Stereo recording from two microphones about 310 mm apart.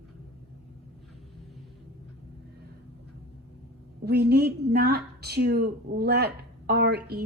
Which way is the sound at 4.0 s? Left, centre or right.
Right.